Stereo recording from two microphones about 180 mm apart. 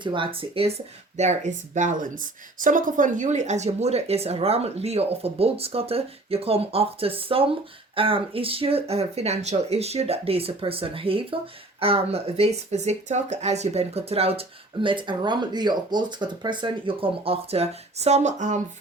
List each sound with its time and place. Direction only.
0.0 s speech: 25° right (ahead or behind)